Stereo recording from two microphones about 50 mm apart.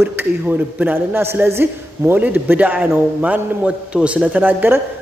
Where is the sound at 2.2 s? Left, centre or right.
Right.